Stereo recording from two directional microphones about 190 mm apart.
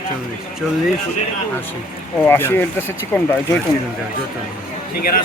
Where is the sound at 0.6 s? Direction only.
Centre (ahead or behind).